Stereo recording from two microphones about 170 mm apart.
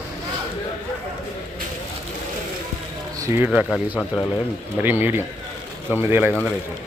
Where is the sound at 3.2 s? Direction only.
15° right (ahead or behind).